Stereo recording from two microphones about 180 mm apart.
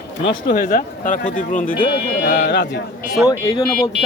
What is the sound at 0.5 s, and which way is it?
Speech, 45° left (ahead or behind).